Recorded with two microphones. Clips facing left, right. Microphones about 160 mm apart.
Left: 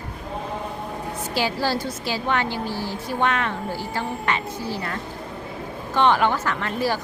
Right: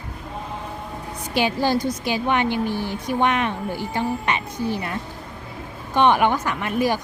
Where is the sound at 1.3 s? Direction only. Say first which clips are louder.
Right 4 dB; 20° right (ahead or behind).